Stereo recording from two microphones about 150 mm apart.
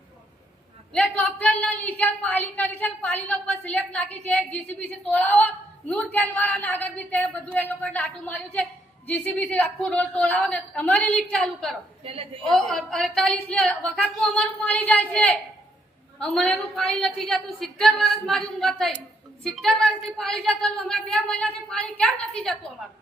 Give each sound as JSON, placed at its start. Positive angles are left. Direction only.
{"t": 0.9, "sound": "a woman's voice", "side_deg": 10}
{"t": 12.0, "sound": "a woman's voice", "side_deg": -40}
{"t": 12.5, "sound": "a woman's voice", "side_deg": 0}